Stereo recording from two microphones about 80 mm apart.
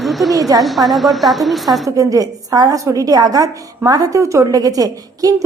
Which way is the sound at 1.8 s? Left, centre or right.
Right.